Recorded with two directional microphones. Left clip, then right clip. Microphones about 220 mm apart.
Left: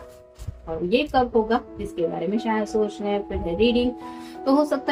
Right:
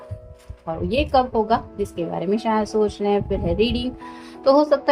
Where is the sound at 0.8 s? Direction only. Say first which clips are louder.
Right 2 dB; 50° right (ahead or behind).